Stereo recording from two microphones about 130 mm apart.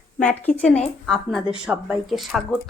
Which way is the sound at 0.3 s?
15° left (ahead or behind).